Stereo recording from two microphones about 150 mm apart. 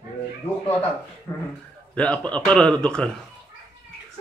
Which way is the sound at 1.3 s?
20° left (ahead or behind).